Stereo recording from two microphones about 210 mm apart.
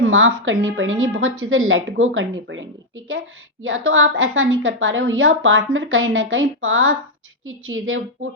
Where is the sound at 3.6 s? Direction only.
70° right (ahead or behind).